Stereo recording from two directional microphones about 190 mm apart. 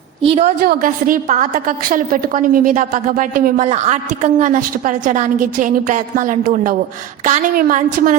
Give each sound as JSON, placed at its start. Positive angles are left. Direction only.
{"t": 0.2, "sound": "a woman's voice", "side_deg": -30}
{"t": 0.6, "sound": "a woman's voice", "side_deg": -50}